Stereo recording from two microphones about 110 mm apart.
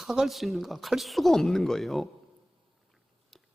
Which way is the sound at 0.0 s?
Centre (ahead or behind).